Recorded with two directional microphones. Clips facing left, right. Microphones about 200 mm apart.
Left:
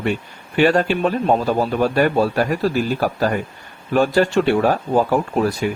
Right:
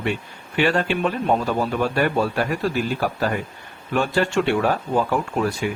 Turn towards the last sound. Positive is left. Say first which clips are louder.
# left 4 dB
turn(degrees=40)  # may be behind; listen again after turning